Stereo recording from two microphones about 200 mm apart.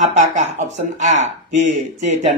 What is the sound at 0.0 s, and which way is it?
Speech, 35° right (ahead or behind).